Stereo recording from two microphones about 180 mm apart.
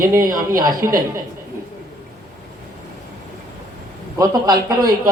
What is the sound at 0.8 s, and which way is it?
Speech, 50° right (ahead or behind).